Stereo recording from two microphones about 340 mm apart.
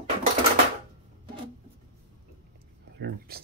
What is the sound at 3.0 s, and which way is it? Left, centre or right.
Speech, right.